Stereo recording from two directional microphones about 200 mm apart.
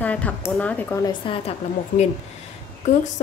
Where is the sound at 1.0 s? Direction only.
25° left (ahead or behind).